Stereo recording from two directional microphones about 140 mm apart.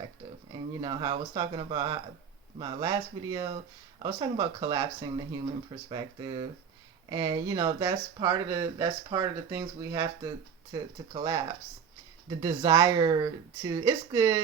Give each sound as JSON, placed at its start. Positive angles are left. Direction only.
{"t": 0.5, "sound": "speech", "side_deg": -35}